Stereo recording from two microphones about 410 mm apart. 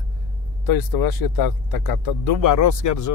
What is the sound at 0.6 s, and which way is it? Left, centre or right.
Speech, left.